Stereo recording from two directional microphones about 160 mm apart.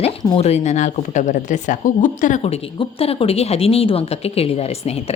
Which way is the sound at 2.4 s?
40° left (ahead or behind).